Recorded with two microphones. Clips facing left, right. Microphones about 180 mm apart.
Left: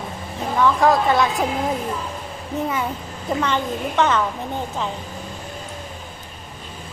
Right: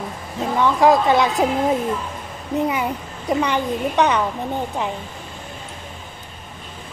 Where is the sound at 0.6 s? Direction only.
20° right (ahead or behind).